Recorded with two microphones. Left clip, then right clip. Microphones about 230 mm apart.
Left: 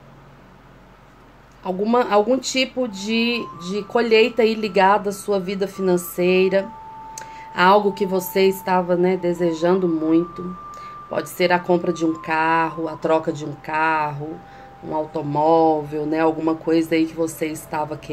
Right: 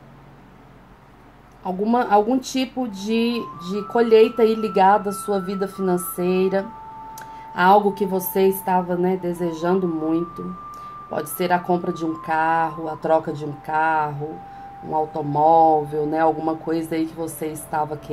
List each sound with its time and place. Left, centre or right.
1.6 s speech: left